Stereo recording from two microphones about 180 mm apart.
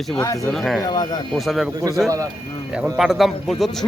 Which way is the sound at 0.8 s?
20° left (ahead or behind).